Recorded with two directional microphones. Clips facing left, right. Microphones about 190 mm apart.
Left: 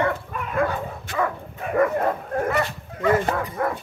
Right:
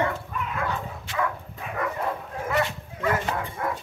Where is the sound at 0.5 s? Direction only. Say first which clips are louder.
Left 10 dB; 50° left (ahead or behind).